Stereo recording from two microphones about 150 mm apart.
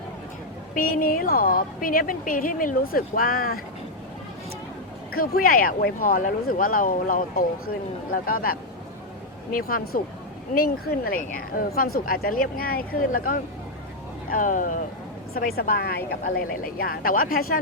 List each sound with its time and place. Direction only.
0.8 s speech: 70° left (ahead or behind)
5.1 s speech: 75° left (ahead or behind)
15.5 s speech: 85° left
16.3 s speech: 75° left (ahead or behind)